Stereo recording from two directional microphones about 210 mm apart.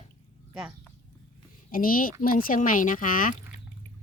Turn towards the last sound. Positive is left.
turn(degrees=40)  # may be behind; listen again after turning